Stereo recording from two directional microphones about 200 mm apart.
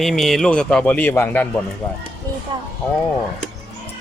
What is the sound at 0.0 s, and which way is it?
Speech, centre (ahead or behind).